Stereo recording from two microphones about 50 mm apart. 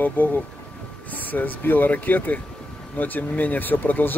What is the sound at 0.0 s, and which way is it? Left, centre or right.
Speech, left.